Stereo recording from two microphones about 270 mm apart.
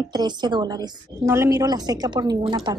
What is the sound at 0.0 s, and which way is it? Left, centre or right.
A woman's voice, centre.